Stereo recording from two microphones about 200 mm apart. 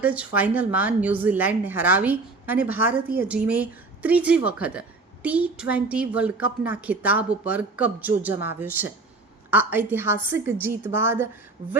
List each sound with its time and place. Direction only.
0.0 s a woman's voice: 5° right (ahead or behind)